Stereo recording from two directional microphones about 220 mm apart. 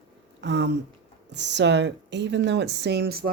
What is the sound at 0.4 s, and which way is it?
Speech, 50° right (ahead or behind).